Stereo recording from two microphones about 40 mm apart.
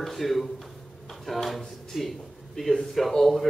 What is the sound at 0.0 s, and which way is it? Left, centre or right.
Speech, centre.